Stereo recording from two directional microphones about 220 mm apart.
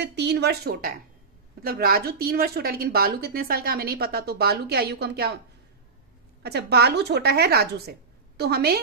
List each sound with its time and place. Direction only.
0.0 s a woman's voice: 50° right (ahead or behind)
6.4 s a woman's voice: 45° right (ahead or behind)